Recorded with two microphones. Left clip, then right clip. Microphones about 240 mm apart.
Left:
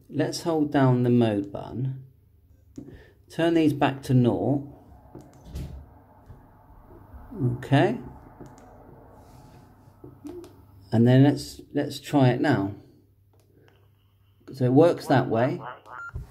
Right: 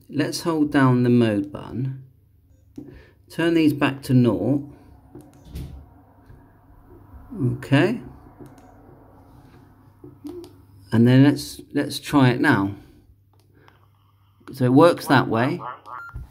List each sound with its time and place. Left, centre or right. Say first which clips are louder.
0.1 s speech: right 2 dB; centre
7.6 s speech: right 2 dB; centre
10.4 s speech: right 3 dB; centre
14.4 s speech: right 4 dB; centre
15.9 s a sound: right 3 dB; centre